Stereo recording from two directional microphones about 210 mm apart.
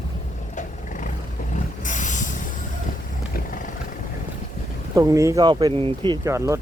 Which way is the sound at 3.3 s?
40° left (ahead or behind).